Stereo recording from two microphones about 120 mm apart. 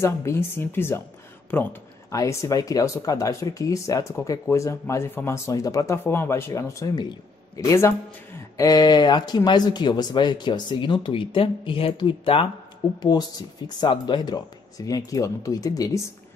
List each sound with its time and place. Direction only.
0.0 s speech: 25° left (ahead or behind)
1.5 s a sound: 15° left (ahead or behind)
2.1 s speech: 25° left (ahead or behind); by 12.4 s 45° left (ahead or behind)
13.0 s speech: 35° left (ahead or behind)